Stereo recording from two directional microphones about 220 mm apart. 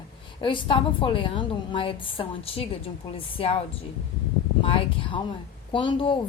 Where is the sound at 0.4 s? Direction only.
25° left (ahead or behind).